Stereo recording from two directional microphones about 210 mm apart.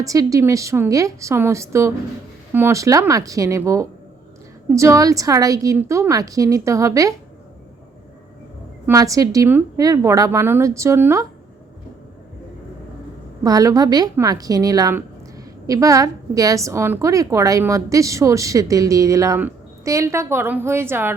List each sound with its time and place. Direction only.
0.0 s a woman's voice: 15° right (ahead or behind)
8.9 s a woman's voice: 15° right (ahead or behind)
13.4 s a woman's voice: 15° right (ahead or behind)